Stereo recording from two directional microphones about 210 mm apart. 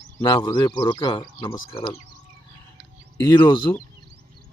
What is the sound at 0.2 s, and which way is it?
Speech, 20° left (ahead or behind).